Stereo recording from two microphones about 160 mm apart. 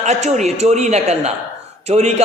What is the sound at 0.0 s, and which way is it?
A man's voice, 45° right (ahead or behind).